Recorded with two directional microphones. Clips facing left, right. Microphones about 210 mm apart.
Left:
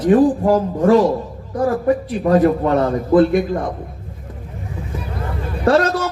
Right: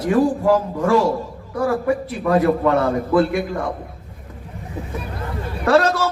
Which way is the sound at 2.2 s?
40° left (ahead or behind).